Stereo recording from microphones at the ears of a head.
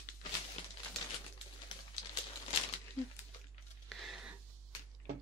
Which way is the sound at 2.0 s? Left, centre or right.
Left.